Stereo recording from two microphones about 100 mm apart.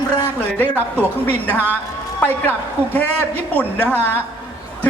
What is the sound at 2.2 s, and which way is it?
A woman's voice, 20° left (ahead or behind).